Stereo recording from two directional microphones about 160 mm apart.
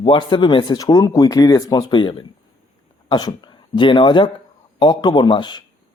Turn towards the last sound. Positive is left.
turn(degrees=30)  # may be behind; listen again after turning